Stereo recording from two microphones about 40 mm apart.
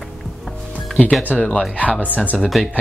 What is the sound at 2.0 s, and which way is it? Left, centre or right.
Speech, left.